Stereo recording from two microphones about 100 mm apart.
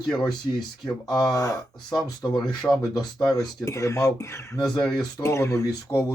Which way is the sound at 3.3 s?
35° left (ahead or behind).